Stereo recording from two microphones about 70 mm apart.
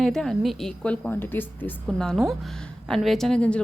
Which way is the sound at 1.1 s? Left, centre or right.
Left.